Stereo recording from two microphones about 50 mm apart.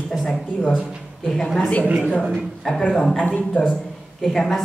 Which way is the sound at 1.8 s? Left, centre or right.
Right.